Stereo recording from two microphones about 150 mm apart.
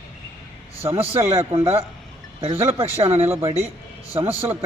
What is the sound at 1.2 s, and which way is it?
Speech, 15° right (ahead or behind).